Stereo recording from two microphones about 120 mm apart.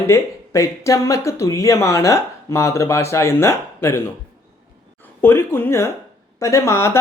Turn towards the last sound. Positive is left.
turn(degrees=25)  # may be behind; listen again after turning